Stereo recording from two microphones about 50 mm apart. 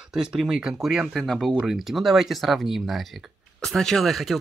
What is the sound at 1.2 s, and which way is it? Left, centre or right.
Speech, centre.